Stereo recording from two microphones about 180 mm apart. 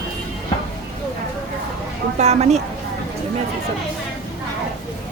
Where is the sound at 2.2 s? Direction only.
35° right (ahead or behind).